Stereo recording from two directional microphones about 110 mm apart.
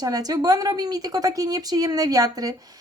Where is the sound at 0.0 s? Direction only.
35° right (ahead or behind).